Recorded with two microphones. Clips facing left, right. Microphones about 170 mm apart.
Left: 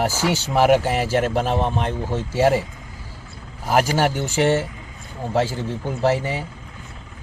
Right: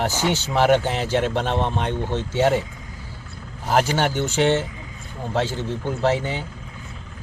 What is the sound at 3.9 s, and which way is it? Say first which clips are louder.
Speech: left 1 dB; 5° left (ahead or behind).